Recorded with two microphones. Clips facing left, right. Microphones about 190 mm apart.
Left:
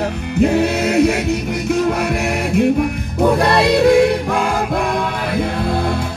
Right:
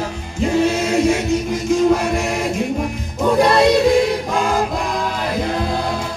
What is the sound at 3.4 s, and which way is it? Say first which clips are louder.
Music: right 4 dB; 60° left (ahead or behind).